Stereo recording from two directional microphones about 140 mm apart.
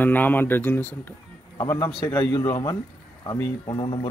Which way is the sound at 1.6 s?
25° left (ahead or behind).